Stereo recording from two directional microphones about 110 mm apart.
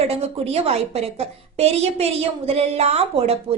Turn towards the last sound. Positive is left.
turn(degrees=-70)  # may be behind; listen again after turning